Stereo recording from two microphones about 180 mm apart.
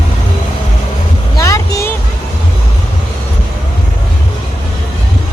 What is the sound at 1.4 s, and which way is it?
Vehicle, 20° left (ahead or behind).